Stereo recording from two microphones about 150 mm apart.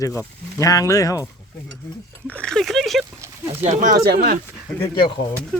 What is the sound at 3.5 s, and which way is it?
Speech, 45° right (ahead or behind).